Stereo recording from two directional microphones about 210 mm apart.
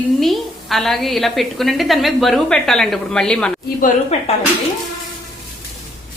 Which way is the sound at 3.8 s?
40° left (ahead or behind).